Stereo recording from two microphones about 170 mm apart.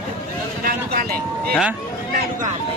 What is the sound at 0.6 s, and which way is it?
Vehicle, 60° right (ahead or behind).